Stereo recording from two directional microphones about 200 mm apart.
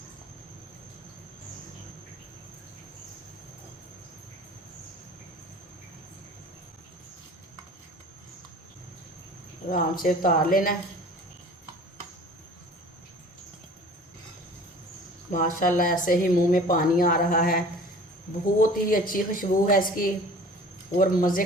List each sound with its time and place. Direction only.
9.6 s speech: 45° left (ahead or behind)
15.3 s speech: 40° left (ahead or behind)
18.6 s speech: 45° left (ahead or behind)